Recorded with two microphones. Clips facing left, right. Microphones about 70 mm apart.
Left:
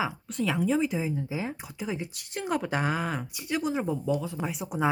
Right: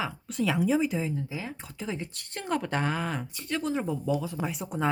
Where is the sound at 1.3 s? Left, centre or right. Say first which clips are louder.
Left 4 dB; left.